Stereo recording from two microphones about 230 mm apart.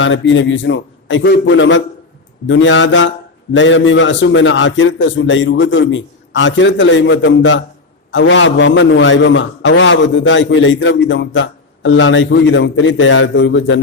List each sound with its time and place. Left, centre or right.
0.0 s a man's voice: left